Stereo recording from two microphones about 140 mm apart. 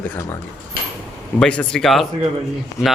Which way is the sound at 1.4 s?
5° left (ahead or behind).